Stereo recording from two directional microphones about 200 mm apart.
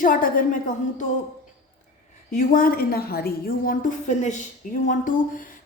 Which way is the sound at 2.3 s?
45° left (ahead or behind).